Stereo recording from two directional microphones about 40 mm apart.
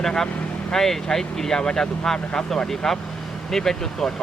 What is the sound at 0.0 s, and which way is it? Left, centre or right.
Speech, centre.